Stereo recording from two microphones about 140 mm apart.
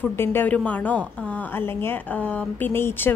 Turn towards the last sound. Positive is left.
turn(degrees=15)  # may be behind; listen again after turning